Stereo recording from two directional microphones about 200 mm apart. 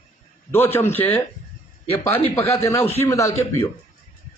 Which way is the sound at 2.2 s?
15° left (ahead or behind).